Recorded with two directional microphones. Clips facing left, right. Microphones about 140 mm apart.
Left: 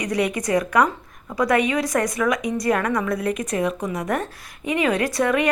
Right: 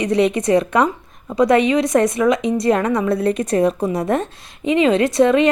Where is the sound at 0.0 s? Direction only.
25° right (ahead or behind).